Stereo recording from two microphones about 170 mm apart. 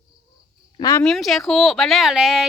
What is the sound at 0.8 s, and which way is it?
Speech, 20° left (ahead or behind).